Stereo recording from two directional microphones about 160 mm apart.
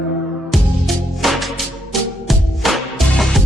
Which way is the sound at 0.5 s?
Centre (ahead or behind).